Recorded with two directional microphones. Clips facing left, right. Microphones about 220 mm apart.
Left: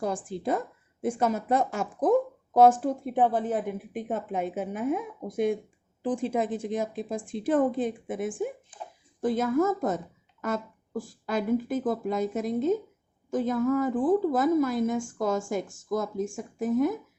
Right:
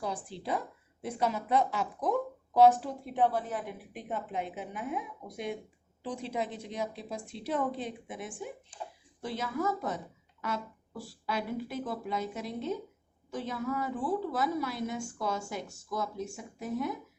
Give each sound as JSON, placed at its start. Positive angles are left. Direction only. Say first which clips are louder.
{"t": 0.0, "sound": "speech", "louder": "left 7 dB", "side_deg": 45}